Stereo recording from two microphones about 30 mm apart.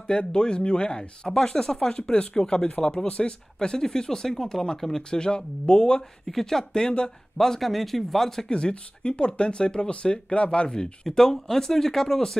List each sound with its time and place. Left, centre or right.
0.0 s speech: left
2.7 s speech: left
3.5 s speech: left
5.1 s speech: left
6.2 s speech: centre
8.5 s speech: left
11.1 s speech: centre